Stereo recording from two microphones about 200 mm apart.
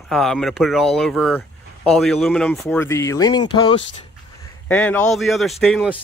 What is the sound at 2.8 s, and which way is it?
Speech, 15° left (ahead or behind).